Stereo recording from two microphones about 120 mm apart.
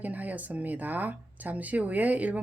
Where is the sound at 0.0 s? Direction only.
15° right (ahead or behind).